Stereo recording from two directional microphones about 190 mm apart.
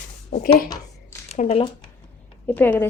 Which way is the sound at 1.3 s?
35° left (ahead or behind).